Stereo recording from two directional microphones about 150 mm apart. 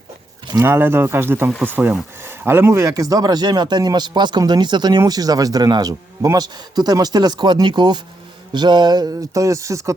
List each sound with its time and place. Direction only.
0.6 s speech: 15° right (ahead or behind)